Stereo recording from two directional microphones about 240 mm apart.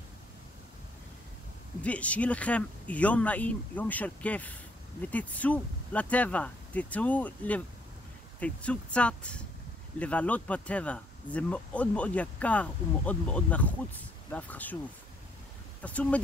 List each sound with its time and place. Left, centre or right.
1.8 s speech: centre
15.8 s speech: centre